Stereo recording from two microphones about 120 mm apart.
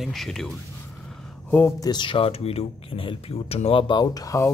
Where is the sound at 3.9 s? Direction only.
40° left (ahead or behind).